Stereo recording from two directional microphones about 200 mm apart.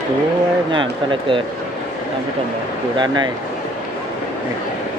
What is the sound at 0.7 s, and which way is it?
Speech, 25° right (ahead or behind).